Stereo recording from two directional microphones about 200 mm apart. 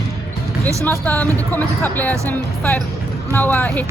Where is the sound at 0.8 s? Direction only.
10° left (ahead or behind).